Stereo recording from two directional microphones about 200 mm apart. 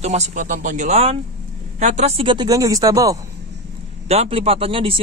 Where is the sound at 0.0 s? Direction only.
35° right (ahead or behind); by 3.2 s 15° right (ahead or behind).